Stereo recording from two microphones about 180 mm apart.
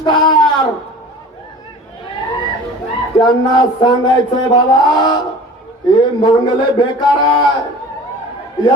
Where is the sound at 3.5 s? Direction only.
25° left (ahead or behind).